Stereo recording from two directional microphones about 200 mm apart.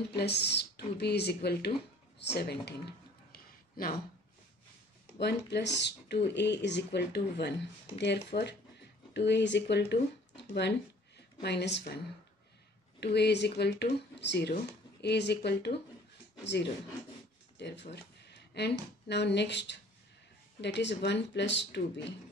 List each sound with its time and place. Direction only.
0.1 s speech: 55° left (ahead or behind)
2.3 s a sound: 55° left (ahead or behind)
5.2 s speech: 60° left (ahead or behind)
13.0 s speech: 55° left (ahead or behind)
17.6 s speech: 60° left (ahead or behind)